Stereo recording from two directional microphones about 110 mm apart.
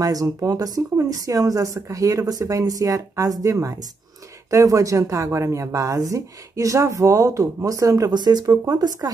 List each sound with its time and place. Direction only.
0.0 s a woman's voice: 35° right (ahead or behind)